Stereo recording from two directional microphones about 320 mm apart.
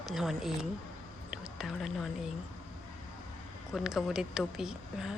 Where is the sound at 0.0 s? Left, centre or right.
Centre.